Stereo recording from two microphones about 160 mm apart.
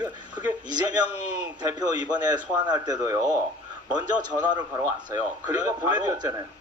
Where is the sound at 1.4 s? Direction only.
25° right (ahead or behind).